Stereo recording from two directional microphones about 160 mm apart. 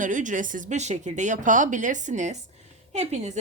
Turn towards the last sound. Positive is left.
turn(degrees=-45)  # may be behind; listen again after turning